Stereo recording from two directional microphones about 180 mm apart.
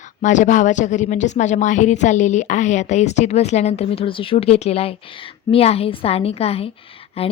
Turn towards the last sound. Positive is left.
turn(degrees=35)  # may be behind; listen again after turning